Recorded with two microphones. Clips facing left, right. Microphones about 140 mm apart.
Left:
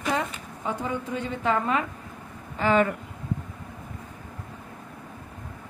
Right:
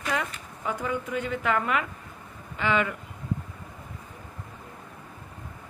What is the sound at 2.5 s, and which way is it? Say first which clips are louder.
Speech: left 4 dB; 40° left (ahead or behind).